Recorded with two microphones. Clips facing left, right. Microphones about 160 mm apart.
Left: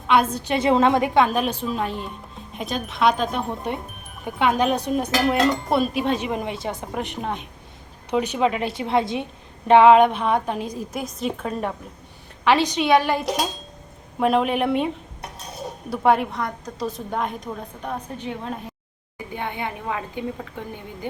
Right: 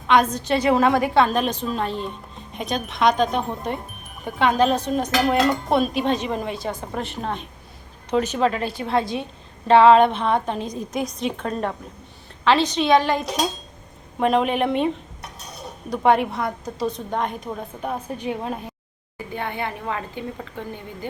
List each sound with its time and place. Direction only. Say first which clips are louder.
0.1 s a woman's voice: right 1 dB; 5° left (ahead or behind)
0.5 s a woman's voice: even; 25° left (ahead or behind); by 14.8 s 5° left (ahead or behind)
15.9 s a woman's voice: right 1 dB; centre (ahead or behind)
19.1 s a woman's voice: right 1 dB; 15° left (ahead or behind)